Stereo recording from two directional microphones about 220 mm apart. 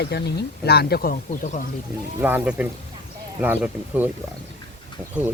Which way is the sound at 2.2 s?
10° right (ahead or behind).